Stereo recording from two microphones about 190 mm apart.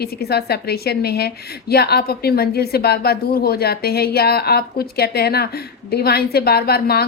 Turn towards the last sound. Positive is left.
turn(degrees=55)  # may be behind; listen again after turning